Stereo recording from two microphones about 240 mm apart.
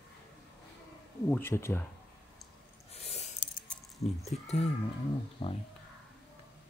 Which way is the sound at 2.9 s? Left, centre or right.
Left.